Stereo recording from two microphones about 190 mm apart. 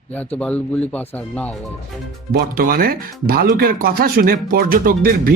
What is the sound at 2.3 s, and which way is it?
Speech, 50° right (ahead or behind).